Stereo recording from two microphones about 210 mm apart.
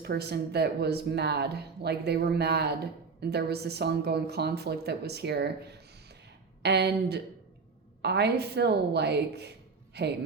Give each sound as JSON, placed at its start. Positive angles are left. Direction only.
{"t": 0.0, "sound": "speech", "side_deg": -50}